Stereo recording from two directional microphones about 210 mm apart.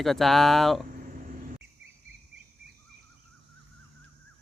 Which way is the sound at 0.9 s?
40° right (ahead or behind).